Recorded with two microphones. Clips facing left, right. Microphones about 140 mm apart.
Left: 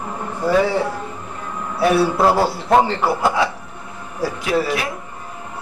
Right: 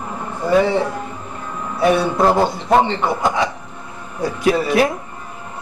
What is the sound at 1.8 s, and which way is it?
A man's voice, 5° left (ahead or behind).